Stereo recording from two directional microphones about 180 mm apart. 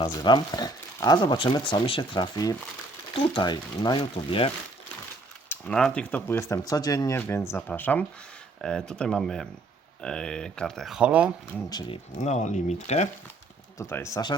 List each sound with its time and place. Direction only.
0.0 s speech: 25° left (ahead or behind)
5.5 s speech: 5° left (ahead or behind)
11.7 s speech: 25° left (ahead or behind)
12.2 s speech: 40° left (ahead or behind)
13.7 s speech: 15° left (ahead or behind)